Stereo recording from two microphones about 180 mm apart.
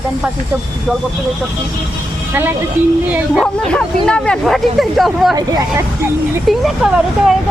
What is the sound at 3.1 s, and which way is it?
Speech, 5° right (ahead or behind).